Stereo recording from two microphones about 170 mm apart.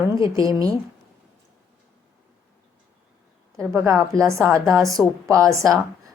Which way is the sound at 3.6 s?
15° right (ahead or behind).